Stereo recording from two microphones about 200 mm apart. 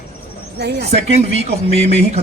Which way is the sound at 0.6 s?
55° right (ahead or behind).